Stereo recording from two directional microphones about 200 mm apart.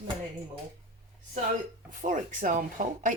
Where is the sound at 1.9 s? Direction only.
40° right (ahead or behind).